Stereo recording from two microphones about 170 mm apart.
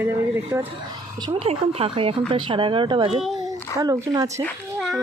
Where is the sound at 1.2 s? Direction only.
35° right (ahead or behind).